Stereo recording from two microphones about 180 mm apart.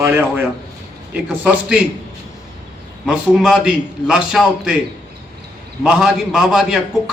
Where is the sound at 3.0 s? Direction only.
Centre (ahead or behind).